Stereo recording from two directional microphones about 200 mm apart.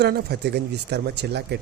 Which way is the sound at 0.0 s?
55° right (ahead or behind).